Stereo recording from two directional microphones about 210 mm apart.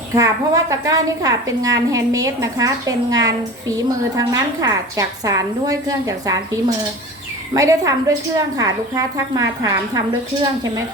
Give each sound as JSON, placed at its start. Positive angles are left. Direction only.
{"t": 0.1, "sound": "a woman's voice", "side_deg": -15}